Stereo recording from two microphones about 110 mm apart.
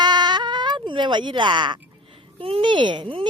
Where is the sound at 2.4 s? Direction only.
55° right (ahead or behind).